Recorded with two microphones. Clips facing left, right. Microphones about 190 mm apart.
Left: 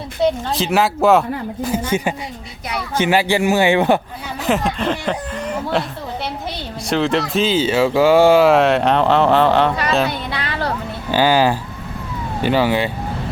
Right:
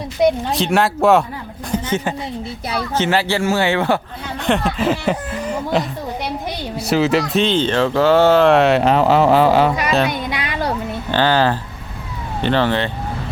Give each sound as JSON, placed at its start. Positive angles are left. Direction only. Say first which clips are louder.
{"t": 0.2, "sound": "speech", "louder": "right 2 dB", "side_deg": -15}
{"t": 0.5, "sound": "a man's voice", "louder": "even", "side_deg": 0}
{"t": 4.4, "sound": "speech", "louder": "right 1 dB", "side_deg": 0}
{"t": 6.9, "sound": "speech", "louder": "right 2 dB", "side_deg": -5}
{"t": 10.1, "sound": "a sound", "louder": "right 1 dB", "side_deg": -15}
{"t": 11.1, "sound": "a man's voice", "louder": "left 1 dB", "side_deg": 10}